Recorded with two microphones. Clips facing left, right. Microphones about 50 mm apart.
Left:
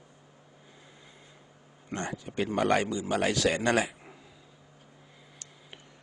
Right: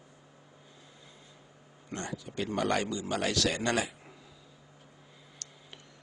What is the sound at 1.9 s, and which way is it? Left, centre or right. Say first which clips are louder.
Speech: left 3 dB; left.